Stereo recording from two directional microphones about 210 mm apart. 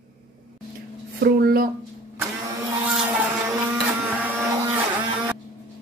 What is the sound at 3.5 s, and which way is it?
Printer, 10° right (ahead or behind).